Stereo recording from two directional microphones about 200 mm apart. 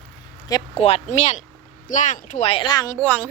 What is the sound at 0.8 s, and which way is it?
A woman's voice, 30° left (ahead or behind).